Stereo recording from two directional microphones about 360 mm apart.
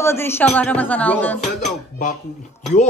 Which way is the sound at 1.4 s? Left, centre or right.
Centre.